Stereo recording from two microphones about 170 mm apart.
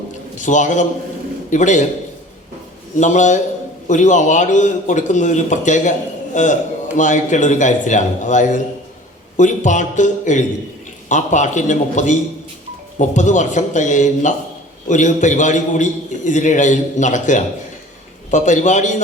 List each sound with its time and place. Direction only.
0.3 s a man's voice: 45° left (ahead or behind)
3.0 s a man's voice: 45° left (ahead or behind)